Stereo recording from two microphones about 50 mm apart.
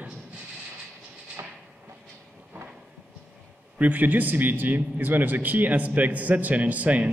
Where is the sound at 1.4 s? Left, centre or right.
Right.